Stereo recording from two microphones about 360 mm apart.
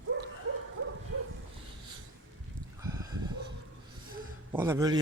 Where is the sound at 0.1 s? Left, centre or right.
Right.